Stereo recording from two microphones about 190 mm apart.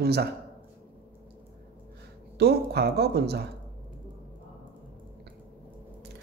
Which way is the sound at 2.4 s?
55° right (ahead or behind).